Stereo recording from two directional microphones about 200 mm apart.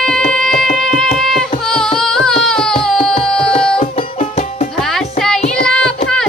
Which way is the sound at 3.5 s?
30° left (ahead or behind).